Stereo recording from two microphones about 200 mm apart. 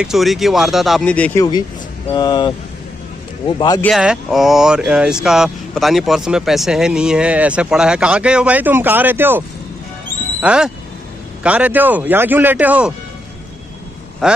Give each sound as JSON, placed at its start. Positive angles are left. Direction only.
{"t": 0.0, "sound": "speech", "side_deg": 0}
{"t": 2.1, "sound": "speech", "side_deg": 20}
{"t": 3.8, "sound": "speech", "side_deg": 0}
{"t": 10.4, "sound": "speech", "side_deg": -5}
{"t": 14.2, "sound": "speech", "side_deg": -5}